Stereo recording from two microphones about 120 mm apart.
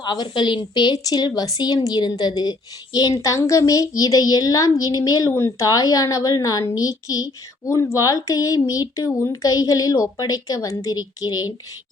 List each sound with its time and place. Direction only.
0.0 s a woman's voice: 40° left (ahead or behind)